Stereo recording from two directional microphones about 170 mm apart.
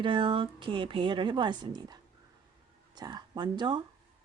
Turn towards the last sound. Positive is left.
turn(degrees=-25)  # may be behind; listen again after turning